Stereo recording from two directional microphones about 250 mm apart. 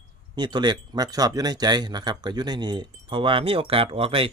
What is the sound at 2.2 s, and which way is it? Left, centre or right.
Wind chime, centre.